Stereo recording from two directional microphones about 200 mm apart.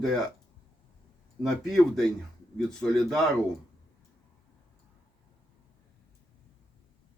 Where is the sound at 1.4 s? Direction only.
Centre (ahead or behind).